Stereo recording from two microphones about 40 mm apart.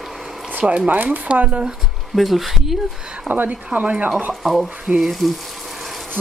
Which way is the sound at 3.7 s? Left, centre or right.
Right.